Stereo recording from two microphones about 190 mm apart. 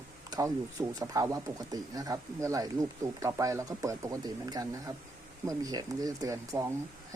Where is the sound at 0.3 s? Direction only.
20° right (ahead or behind).